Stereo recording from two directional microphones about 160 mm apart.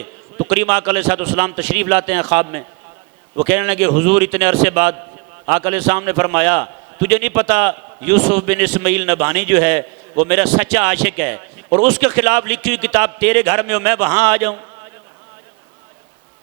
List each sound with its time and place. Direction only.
0.0 s a man's voice: 30° right (ahead or behind)
11.2 s a man's voice: 30° right (ahead or behind)
14.0 s a man's voice: 20° right (ahead or behind)